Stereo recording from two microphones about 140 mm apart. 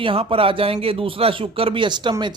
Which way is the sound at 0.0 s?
40° right (ahead or behind).